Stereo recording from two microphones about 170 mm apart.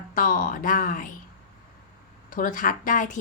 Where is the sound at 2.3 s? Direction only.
50° left (ahead or behind).